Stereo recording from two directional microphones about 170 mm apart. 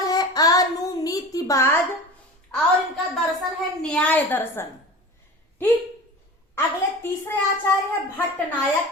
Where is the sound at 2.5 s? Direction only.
5° left (ahead or behind).